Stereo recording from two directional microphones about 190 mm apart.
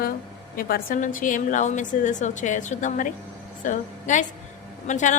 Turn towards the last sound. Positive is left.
turn(degrees=40)  # may be behind; listen again after turning